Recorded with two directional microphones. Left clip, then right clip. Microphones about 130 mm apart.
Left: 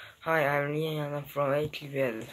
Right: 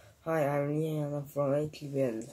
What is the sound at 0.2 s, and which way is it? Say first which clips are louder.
Speech: left 3 dB; 20° right (ahead or behind).